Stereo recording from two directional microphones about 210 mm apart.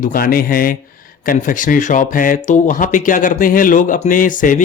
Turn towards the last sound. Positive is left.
turn(degrees=40)  # may be behind; listen again after turning